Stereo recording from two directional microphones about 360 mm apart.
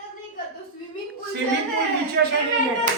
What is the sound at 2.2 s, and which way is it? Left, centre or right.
Speech, right.